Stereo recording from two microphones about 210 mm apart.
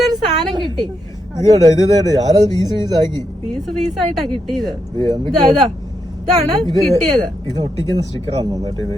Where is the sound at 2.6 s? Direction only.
20° right (ahead or behind).